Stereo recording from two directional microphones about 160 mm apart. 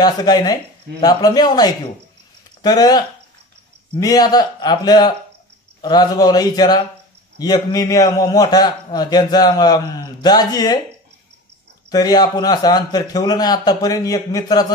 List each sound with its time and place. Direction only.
0.0 s a man's voice: 25° left (ahead or behind)
11.9 s a man's voice: 25° left (ahead or behind)